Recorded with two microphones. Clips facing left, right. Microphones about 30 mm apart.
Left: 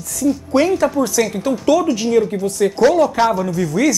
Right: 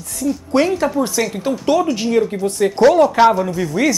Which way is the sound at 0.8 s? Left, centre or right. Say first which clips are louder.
Left 1 dB; centre.